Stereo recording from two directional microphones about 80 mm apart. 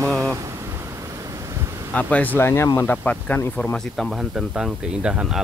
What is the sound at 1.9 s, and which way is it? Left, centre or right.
Speech, centre.